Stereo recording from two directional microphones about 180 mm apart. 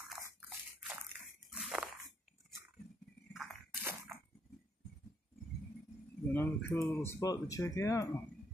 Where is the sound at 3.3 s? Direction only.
Centre (ahead or behind).